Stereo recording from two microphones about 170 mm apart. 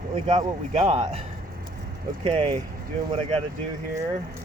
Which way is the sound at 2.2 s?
30° right (ahead or behind).